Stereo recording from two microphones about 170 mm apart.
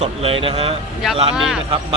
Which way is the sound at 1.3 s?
5° right (ahead or behind).